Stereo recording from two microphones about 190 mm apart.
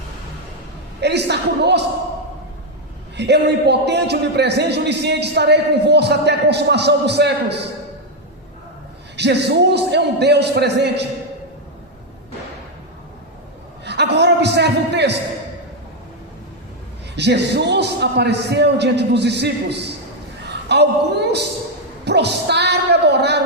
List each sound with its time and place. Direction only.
1.0 s a man's voice: 60° right (ahead or behind)
3.2 s a man's voice: 65° right (ahead or behind)
9.1 s a man's voice: 60° right (ahead or behind)
13.8 s a man's voice: 60° right (ahead or behind)
17.2 s a man's voice: 65° right (ahead or behind)
20.7 s a sound: 60° right (ahead or behind)
22.0 s a sound: 60° right (ahead or behind)